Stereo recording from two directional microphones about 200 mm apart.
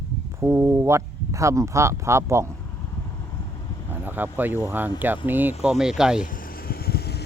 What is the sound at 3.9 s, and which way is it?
Speech, 10° right (ahead or behind).